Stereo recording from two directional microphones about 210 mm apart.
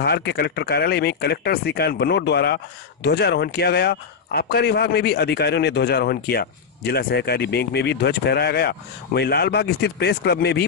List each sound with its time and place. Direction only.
0.0 s speech: 50° left (ahead or behind)